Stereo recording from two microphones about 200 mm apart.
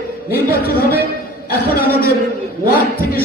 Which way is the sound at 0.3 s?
50° left (ahead or behind).